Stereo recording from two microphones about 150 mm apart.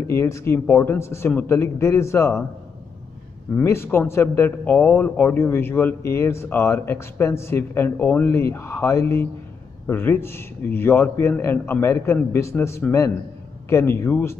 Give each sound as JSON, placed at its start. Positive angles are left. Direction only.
{"t": 0.1, "sound": "speech", "side_deg": 20}
{"t": 3.5, "sound": "speech", "side_deg": 15}